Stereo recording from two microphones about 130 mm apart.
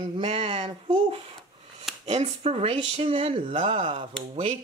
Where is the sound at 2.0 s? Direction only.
50° right (ahead or behind).